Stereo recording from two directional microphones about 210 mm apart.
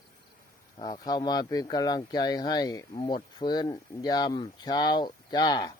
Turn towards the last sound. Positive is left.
turn(degrees=20)  # may be behind; listen again after turning